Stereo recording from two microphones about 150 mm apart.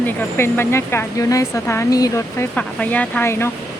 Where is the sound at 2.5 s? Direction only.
10° left (ahead or behind).